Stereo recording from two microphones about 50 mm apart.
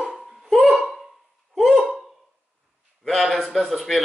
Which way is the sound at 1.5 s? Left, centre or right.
Centre.